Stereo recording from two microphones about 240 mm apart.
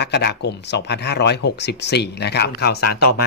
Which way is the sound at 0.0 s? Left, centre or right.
Left.